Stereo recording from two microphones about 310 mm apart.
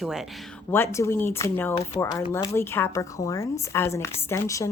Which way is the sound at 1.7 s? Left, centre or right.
Centre.